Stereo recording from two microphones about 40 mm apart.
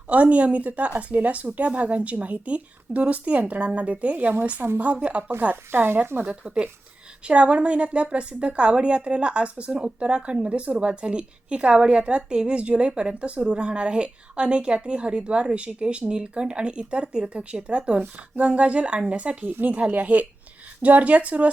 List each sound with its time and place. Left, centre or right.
0.1 s speech: right
5.3 s speech: right
5.7 s speech: right
6.4 s a woman's voice: right
19.9 s speech: right